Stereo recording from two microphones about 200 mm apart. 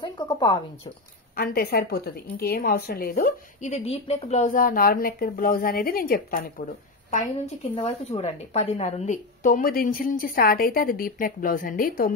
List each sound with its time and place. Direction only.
0.0 s speech: 20° left (ahead or behind)
1.3 s a woman's voice: 50° left (ahead or behind)